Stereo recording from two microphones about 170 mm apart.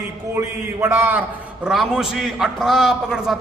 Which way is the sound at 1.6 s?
Centre (ahead or behind).